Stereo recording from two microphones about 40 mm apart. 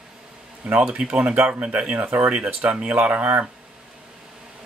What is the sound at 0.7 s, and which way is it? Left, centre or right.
Speech, right.